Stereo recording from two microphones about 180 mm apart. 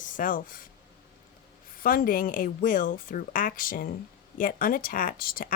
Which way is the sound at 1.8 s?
50° left (ahead or behind).